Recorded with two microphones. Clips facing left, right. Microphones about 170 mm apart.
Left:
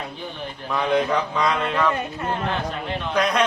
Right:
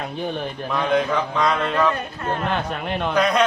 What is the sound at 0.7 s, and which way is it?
A man's voice, centre (ahead or behind).